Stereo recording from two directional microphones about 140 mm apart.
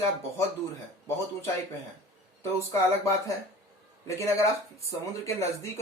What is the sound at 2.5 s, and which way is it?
Speech, 20° left (ahead or behind).